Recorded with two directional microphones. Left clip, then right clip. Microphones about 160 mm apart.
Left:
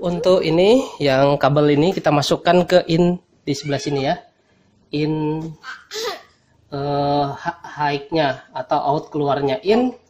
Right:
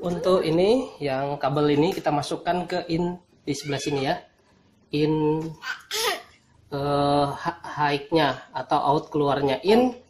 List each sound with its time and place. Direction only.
0.0 s speech: 40° left (ahead or behind)
0.9 s speech: 70° left (ahead or behind)
1.5 s speech: 55° left (ahead or behind); by 3.2 s 80° left
3.4 s speech: 50° left (ahead or behind)
5.6 s a child's voice: 45° right (ahead or behind)
6.7 s speech: 40° left (ahead or behind)